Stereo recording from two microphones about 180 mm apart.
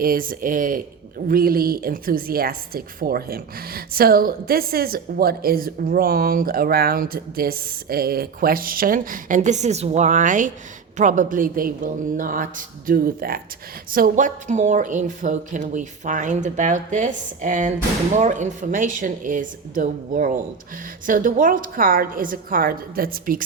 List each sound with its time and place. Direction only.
0.0 s a woman's voice: 55° right (ahead or behind)